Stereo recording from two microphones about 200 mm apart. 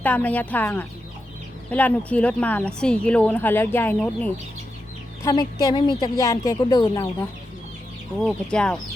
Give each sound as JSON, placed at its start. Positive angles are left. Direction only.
{"t": 0.0, "sound": "a woman's voice", "side_deg": 10}
{"t": 5.2, "sound": "speech", "side_deg": 20}
{"t": 8.2, "sound": "speech", "side_deg": 5}